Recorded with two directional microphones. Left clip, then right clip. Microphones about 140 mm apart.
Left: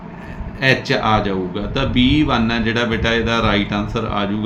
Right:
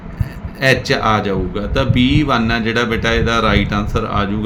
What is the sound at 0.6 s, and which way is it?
Speech, 40° right (ahead or behind).